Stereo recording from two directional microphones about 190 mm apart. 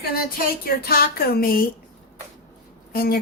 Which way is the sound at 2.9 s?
50° left (ahead or behind).